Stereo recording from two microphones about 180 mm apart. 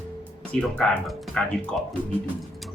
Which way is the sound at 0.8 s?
Centre (ahead or behind).